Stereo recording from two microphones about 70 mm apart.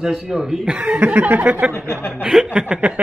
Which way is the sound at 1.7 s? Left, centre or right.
Left.